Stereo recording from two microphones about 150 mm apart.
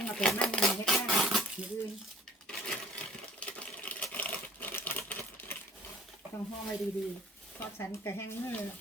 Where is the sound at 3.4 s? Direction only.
10° left (ahead or behind).